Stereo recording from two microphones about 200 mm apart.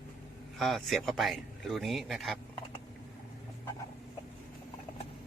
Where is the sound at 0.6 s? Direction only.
Centre (ahead or behind).